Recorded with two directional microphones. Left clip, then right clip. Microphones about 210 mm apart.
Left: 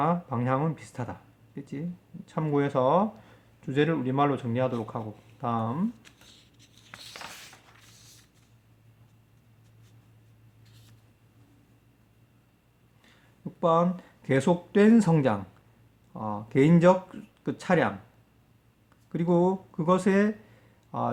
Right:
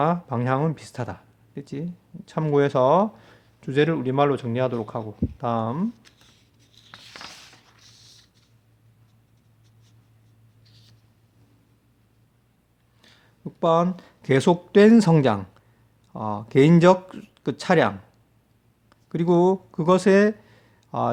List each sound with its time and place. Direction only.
0.0 s speech: 40° right (ahead or behind)
6.9 s a sound: 10° right (ahead or behind)
13.0 s speech: 40° right (ahead or behind)